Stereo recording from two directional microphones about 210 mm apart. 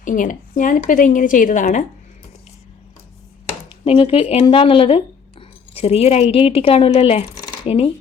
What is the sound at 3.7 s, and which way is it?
A woman's voice, 25° left (ahead or behind).